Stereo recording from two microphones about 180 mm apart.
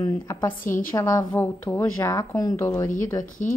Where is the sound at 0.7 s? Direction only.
50° left (ahead or behind).